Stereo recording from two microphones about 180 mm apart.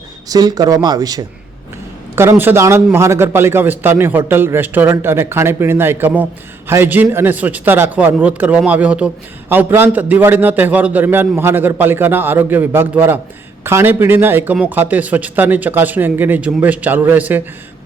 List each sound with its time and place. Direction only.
0.3 s speech: 20° right (ahead or behind)